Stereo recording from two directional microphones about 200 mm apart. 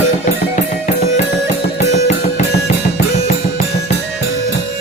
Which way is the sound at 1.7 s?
35° left (ahead or behind).